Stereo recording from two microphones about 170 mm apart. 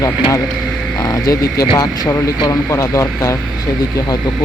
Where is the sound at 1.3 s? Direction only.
25° left (ahead or behind).